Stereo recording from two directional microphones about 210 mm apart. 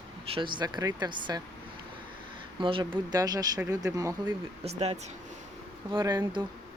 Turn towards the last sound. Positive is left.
turn(degrees=-20)  # may be behind; listen again after turning